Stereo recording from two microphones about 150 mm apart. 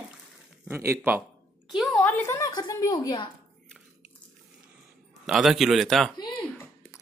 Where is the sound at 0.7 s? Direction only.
15° right (ahead or behind).